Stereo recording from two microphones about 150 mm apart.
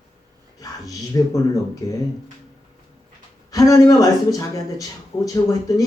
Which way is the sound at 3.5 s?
25° left (ahead or behind).